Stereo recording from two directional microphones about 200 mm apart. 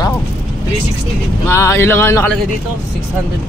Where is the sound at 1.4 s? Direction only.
15° left (ahead or behind).